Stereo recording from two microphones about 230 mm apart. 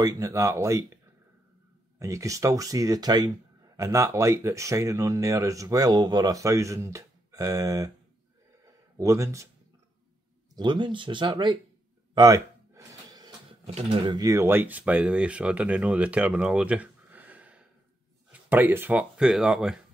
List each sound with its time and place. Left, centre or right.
0.0 s speech: centre
2.0 s speech: centre
8.6 s a sound: centre
10.5 s speech: centre